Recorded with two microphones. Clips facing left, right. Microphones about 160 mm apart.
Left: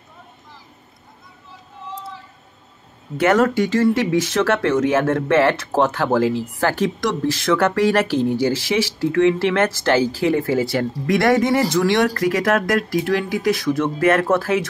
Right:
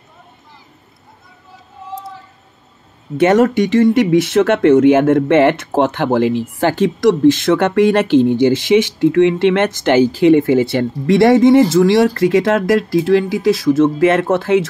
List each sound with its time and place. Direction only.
3.2 s speech: 25° right (ahead or behind)